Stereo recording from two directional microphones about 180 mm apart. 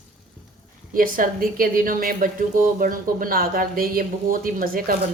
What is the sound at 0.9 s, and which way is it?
A woman's voice, 50° right (ahead or behind).